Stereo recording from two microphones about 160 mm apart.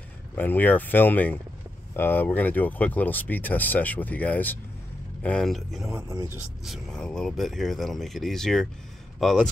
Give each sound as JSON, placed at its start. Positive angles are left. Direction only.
{"t": 0.4, "sound": "speech", "side_deg": 10}
{"t": 5.9, "sound": "speech", "side_deg": -20}
{"t": 6.6, "sound": "speech", "side_deg": 0}